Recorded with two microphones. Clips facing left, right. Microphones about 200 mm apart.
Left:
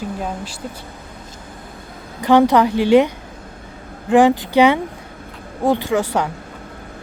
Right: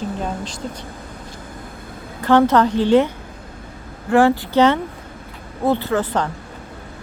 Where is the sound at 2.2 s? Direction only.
15° left (ahead or behind).